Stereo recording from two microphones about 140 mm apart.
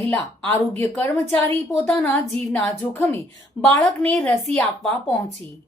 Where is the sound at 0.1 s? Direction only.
15° left (ahead or behind).